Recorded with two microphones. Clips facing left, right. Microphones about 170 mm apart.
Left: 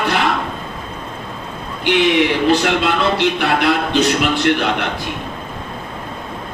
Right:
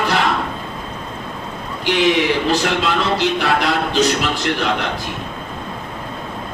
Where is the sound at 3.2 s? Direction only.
60° left (ahead or behind).